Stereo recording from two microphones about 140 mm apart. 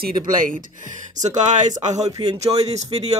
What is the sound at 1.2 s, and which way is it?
Speech, 60° right (ahead or behind).